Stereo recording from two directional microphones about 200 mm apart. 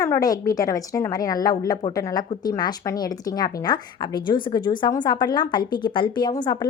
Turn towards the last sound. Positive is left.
turn(degrees=20)  # may be behind; listen again after turning